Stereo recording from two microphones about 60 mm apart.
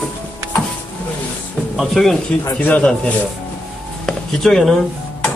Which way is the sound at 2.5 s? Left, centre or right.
Left.